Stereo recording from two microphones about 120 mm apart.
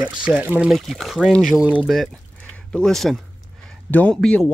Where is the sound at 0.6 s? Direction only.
Centre (ahead or behind).